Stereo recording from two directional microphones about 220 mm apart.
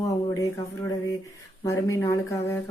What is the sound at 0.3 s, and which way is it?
Speech, 15° left (ahead or behind).